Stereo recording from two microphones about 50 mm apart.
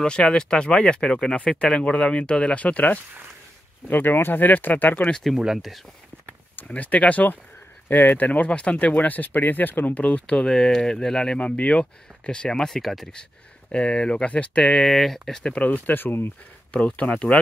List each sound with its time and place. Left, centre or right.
0.0 s speech: centre
3.9 s speech: left
6.7 s speech: left
8.3 s speech: left
8.7 s speech: left
10.2 s speech: centre
11.3 s speech: left; by 13.1 s centre
13.7 s speech: left
14.7 s speech: centre
15.4 s speech: left
15.7 s speech: left
16.7 s speech: left